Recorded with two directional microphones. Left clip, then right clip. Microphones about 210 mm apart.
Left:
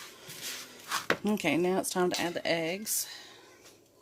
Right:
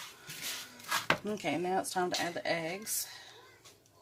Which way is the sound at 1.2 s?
40° left (ahead or behind).